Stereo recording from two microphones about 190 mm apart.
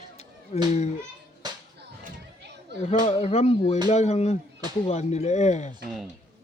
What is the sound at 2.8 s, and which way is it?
Speech, 30° left (ahead or behind).